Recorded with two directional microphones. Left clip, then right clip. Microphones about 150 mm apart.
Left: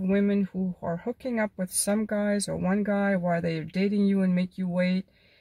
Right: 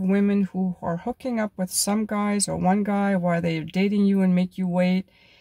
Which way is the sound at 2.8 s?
30° right (ahead or behind).